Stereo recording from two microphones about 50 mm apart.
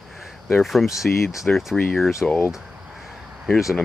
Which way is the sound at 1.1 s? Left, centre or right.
Left.